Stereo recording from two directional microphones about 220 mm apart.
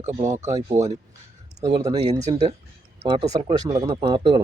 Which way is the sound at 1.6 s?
15° right (ahead or behind).